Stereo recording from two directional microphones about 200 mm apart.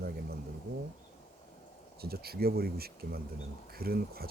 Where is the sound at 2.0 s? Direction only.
50° right (ahead or behind).